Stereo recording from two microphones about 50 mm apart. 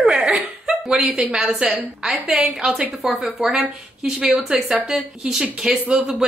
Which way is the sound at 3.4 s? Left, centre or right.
Centre.